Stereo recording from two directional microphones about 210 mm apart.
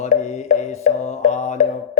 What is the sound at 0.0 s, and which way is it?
Music, 35° left (ahead or behind).